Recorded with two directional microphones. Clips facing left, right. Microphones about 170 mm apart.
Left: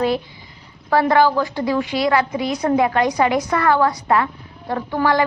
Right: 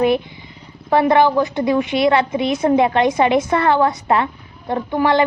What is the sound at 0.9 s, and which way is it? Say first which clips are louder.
A woman's voice: right 2 dB; 20° right (ahead or behind).